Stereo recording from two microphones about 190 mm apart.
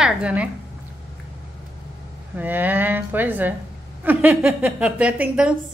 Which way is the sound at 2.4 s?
10° right (ahead or behind).